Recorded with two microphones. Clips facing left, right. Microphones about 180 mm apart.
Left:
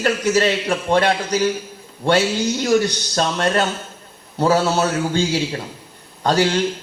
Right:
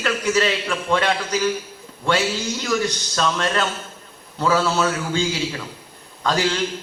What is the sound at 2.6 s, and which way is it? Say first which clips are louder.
A man's voice: left 5 dB; 35° left (ahead or behind).